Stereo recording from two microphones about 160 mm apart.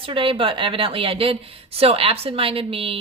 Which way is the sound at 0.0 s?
35° right (ahead or behind).